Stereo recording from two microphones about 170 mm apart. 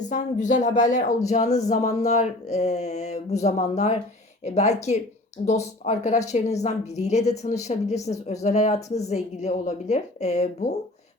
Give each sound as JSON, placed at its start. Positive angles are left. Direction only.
{"t": 0.0, "sound": "speech", "side_deg": 45}